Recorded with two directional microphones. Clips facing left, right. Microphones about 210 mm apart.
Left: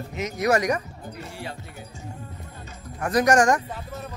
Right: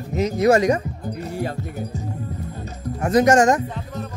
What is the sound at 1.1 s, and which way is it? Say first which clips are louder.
Speech: right 9 dB; 40° right (ahead or behind).